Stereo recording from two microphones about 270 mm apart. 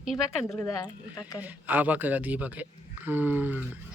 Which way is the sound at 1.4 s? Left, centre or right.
Centre.